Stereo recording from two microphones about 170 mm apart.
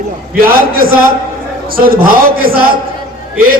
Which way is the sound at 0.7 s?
60° right (ahead or behind).